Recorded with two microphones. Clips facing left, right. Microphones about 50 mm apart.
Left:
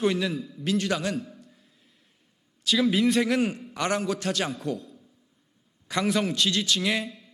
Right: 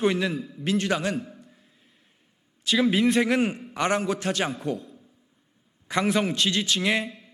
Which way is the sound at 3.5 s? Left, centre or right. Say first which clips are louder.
Right 2 dB; right.